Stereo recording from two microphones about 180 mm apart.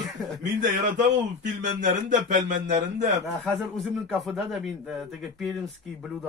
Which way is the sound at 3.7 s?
Centre (ahead or behind).